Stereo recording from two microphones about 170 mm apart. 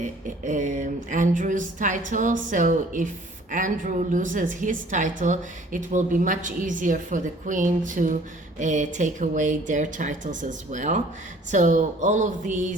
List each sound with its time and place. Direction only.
0.3 s a woman's voice: 50° right (ahead or behind)